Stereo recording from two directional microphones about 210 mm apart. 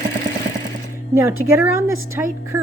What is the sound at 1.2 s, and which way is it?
A woman's voice, 10° right (ahead or behind).